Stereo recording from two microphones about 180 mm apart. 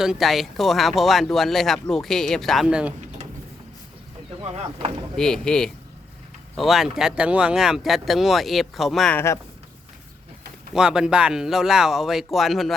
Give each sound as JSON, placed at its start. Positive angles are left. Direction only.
{"t": 0.0, "sound": "speech", "side_deg": 0}
{"t": 4.5, "sound": "speech", "side_deg": -35}
{"t": 5.1, "sound": "speech", "side_deg": 5}
{"t": 9.1, "sound": "speech", "side_deg": 15}
{"t": 10.8, "sound": "speech", "side_deg": -5}